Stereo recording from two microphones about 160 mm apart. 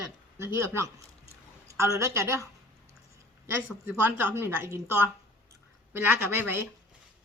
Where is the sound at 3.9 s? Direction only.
15° right (ahead or behind).